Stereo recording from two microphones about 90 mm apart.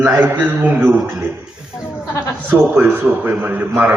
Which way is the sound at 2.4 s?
20° right (ahead or behind).